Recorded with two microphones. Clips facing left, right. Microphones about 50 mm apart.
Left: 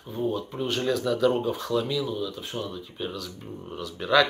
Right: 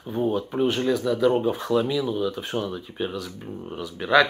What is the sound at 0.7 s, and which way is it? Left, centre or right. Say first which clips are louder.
Speech: left 1 dB; centre.